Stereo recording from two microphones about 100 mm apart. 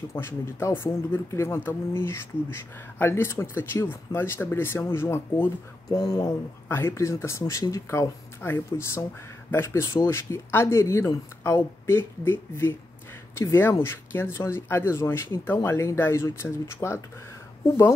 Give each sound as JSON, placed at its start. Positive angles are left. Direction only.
{"t": 0.1, "sound": "speech", "side_deg": 25}
{"t": 6.7, "sound": "speech", "side_deg": 25}